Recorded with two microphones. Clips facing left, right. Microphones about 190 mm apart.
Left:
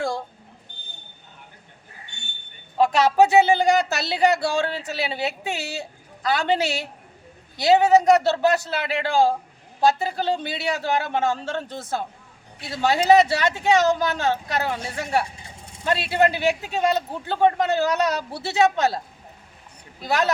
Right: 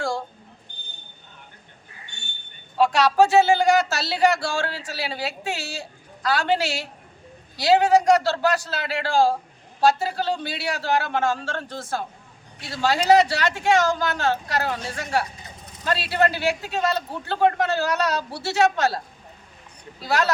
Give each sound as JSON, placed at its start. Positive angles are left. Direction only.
{"t": 2.7, "sound": "speech", "side_deg": 20}
{"t": 20.0, "sound": "speech", "side_deg": 20}